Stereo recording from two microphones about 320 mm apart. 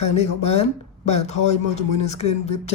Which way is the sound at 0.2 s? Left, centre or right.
Centre.